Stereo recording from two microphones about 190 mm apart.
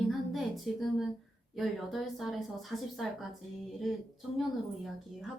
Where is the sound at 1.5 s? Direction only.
Centre (ahead or behind).